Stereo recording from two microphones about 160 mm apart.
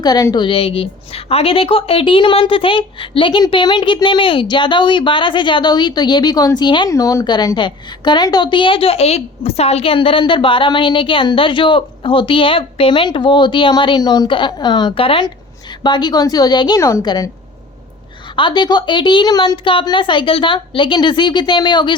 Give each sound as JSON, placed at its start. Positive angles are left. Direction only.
{"t": 0.0, "sound": "a woman's voice", "side_deg": 20}
{"t": 0.4, "sound": "a woman's voice", "side_deg": 35}
{"t": 18.3, "sound": "a woman's voice", "side_deg": 30}